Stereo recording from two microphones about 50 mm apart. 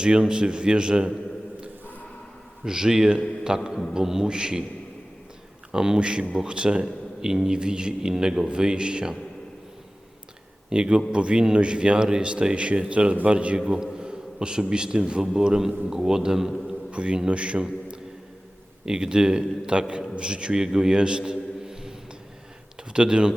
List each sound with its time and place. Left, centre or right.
0.0 s a man's voice: centre
2.6 s a man's voice: centre
5.7 s a man's voice: centre
10.7 s a man's voice: centre